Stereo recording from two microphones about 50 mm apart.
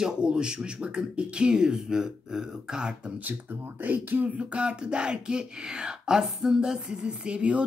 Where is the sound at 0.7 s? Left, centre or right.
Right.